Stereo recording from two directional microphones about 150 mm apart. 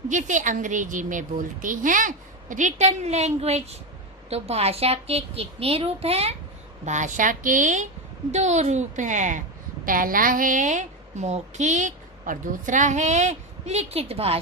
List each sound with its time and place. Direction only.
0.1 s a woman's voice: 55° right (ahead or behind)
6.8 s a woman's voice: 55° right (ahead or behind)